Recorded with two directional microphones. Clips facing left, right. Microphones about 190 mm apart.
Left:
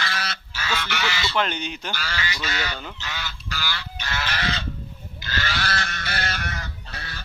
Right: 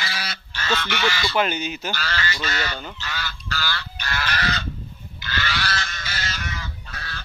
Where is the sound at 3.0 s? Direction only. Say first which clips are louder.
Right 2 dB; 20° left (ahead or behind).